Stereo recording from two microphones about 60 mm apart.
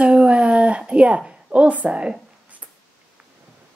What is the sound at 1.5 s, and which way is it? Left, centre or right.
Speech, right.